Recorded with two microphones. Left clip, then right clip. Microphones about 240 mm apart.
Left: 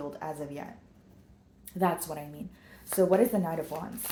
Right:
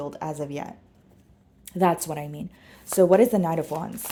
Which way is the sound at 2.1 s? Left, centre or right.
Right.